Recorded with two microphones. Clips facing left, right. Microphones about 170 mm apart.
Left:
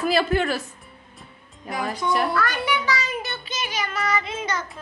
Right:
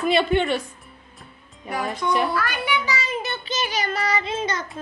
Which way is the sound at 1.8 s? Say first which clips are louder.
Even; centre (ahead or behind).